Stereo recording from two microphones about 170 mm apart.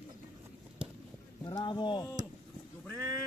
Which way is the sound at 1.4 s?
25° left (ahead or behind).